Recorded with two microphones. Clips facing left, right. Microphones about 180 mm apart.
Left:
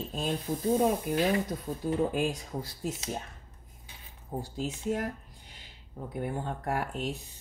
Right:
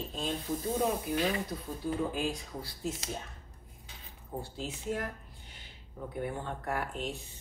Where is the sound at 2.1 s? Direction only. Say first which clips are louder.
Left 4 dB; 45° left (ahead or behind).